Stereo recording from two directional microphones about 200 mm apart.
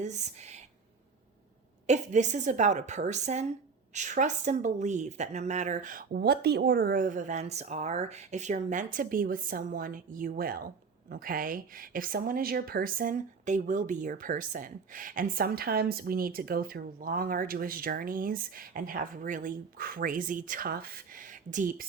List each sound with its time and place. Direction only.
0.0 s speech: 35° right (ahead or behind)
1.9 s a woman's voice: 35° right (ahead or behind)